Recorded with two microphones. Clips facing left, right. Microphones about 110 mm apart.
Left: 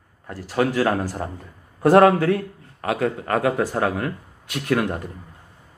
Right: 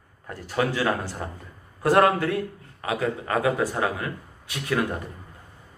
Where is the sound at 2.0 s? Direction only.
65° left (ahead or behind).